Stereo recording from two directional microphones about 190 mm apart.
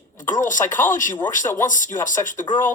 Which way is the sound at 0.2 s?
40° left (ahead or behind).